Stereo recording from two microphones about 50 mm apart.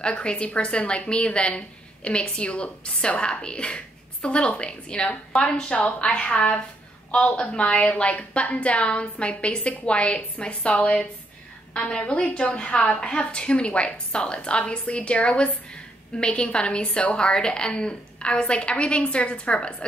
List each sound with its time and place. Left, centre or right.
0.0 s a woman's voice: left